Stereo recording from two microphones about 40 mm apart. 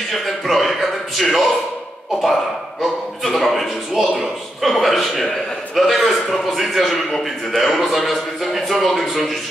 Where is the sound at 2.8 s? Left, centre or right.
Centre.